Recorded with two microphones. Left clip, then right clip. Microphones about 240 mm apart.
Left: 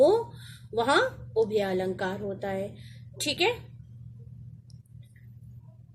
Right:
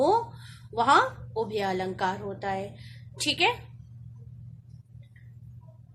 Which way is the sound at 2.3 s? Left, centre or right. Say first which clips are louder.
Right 1 dB; right.